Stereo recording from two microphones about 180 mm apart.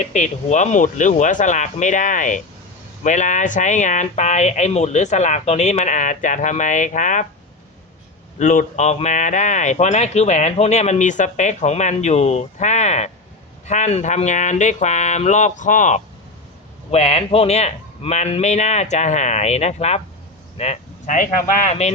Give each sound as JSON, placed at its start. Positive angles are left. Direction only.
{"t": 0.0, "sound": "speech", "side_deg": 40}
{"t": 8.4, "sound": "speech", "side_deg": 45}